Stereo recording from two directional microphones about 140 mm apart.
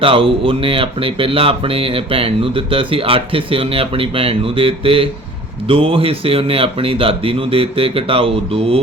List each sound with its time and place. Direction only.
0.0 s speech: 40° right (ahead or behind)